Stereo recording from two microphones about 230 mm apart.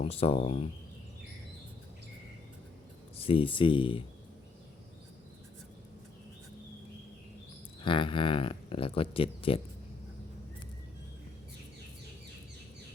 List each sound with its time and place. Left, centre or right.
0.0 s speech: left
3.2 s speech: left
7.8 s speech: left